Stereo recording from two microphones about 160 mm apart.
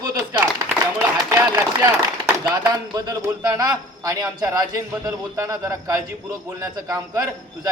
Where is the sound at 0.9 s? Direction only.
10° right (ahead or behind).